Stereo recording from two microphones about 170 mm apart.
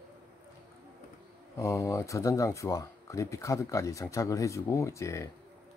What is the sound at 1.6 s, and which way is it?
Speech, 15° left (ahead or behind).